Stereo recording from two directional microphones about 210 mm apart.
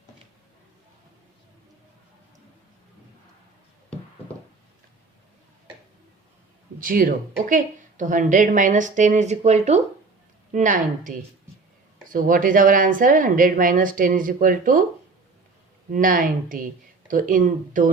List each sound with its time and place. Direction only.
6.7 s speech: 40° right (ahead or behind)
15.9 s speech: 40° right (ahead or behind)